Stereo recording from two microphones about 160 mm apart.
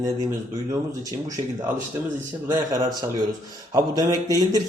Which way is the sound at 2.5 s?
25° right (ahead or behind).